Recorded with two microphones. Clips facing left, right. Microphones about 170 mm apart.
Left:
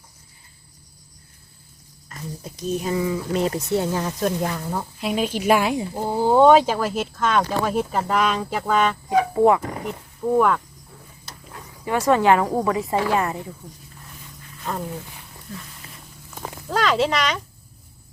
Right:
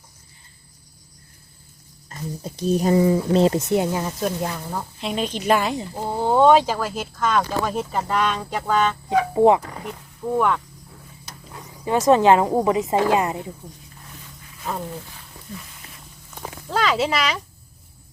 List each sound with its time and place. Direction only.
2.0 s speech: 30° right (ahead or behind)
3.7 s speech: 15° right (ahead or behind); by 9.0 s 5° left (ahead or behind)
9.0 s speech: 20° right (ahead or behind)
10.3 s speech: centre (ahead or behind)
11.9 s speech: 20° right (ahead or behind)
14.6 s speech: centre (ahead or behind)
16.6 s speech: centre (ahead or behind)